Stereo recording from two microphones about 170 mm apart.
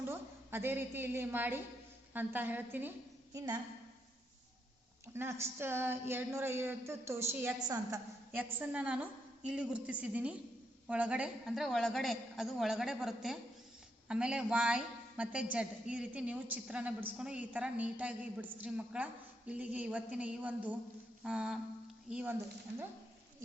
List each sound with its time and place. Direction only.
0.0 s a woman's voice: 15° right (ahead or behind)
3.3 s a woman's voice: 25° right (ahead or behind)
5.0 s a woman's voice: 15° right (ahead or behind)